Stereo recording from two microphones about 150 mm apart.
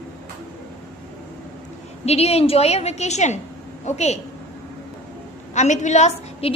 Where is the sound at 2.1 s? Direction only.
45° left (ahead or behind).